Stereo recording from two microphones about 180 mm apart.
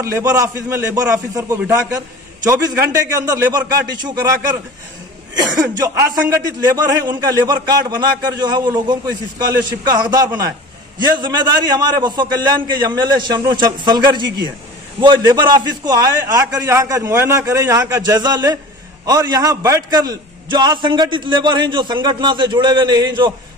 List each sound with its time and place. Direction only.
0.0 s a man's voice: 15° right (ahead or behind)
5.4 s a man's voice: 20° right (ahead or behind)